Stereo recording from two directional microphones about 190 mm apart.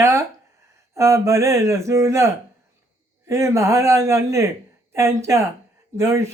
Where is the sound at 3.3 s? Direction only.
15° right (ahead or behind).